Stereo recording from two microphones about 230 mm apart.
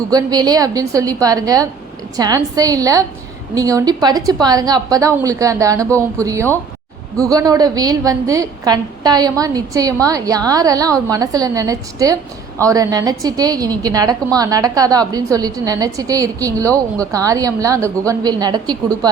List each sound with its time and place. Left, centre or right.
0.1 s a woman's voice: centre